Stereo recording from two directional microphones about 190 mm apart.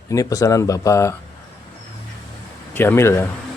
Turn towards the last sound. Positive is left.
turn(degrees=15)  # may be behind; listen again after turning